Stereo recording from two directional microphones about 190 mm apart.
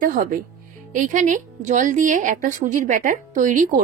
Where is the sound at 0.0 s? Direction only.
45° right (ahead or behind).